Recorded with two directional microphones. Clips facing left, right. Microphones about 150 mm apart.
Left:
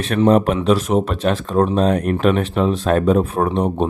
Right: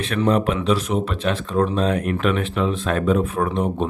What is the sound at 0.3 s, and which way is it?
Speech, 40° left (ahead or behind).